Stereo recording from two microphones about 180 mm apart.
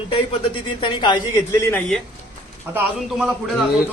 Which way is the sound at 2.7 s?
10° right (ahead or behind).